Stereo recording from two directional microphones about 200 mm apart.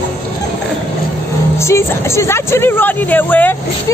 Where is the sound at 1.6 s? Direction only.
15° left (ahead or behind).